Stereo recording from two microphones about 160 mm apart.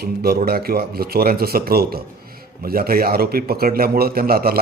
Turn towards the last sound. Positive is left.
turn(degrees=-70)  # may be behind; listen again after turning